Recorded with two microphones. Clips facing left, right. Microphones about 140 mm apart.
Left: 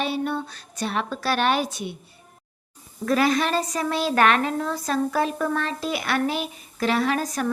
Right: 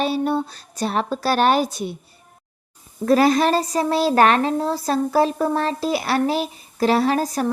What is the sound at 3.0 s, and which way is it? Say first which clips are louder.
Speech: right 5 dB; 35° right (ahead or behind).